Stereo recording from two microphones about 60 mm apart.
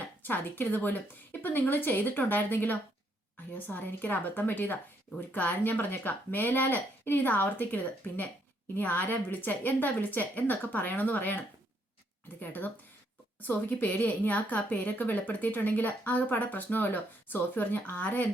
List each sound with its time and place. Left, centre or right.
0.2 s a woman's voice: left
12.4 s a woman's voice: left